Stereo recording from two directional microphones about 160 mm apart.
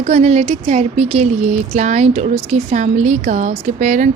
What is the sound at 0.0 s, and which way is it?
Speech, 45° right (ahead or behind).